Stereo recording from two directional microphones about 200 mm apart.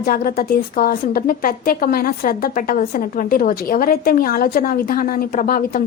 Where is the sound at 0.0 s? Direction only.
45° left (ahead or behind).